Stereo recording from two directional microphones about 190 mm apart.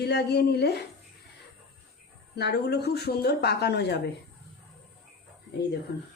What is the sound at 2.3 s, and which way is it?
A woman's voice, 60° left (ahead or behind).